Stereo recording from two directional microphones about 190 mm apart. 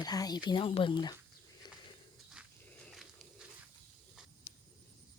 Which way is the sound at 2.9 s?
Centre (ahead or behind).